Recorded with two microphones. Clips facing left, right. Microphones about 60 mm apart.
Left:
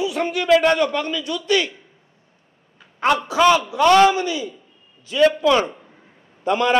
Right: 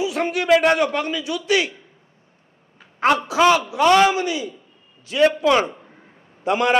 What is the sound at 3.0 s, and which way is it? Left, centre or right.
A man's voice, centre.